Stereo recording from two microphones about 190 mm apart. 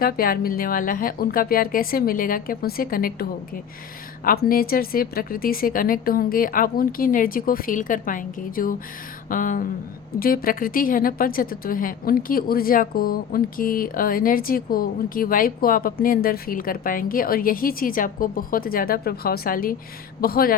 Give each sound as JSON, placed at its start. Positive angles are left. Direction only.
{"t": 0.0, "sound": "a woman's voice", "side_deg": 50}